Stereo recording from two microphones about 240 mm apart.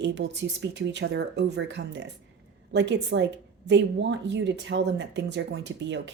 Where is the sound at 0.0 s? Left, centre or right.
Right.